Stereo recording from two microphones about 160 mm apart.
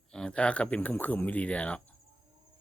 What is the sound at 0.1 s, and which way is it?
Speech, 5° left (ahead or behind).